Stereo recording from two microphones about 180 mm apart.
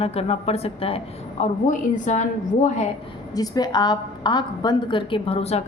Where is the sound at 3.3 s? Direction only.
20° left (ahead or behind).